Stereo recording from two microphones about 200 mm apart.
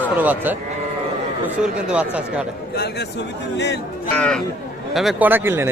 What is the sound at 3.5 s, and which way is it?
Speech, 60° left (ahead or behind).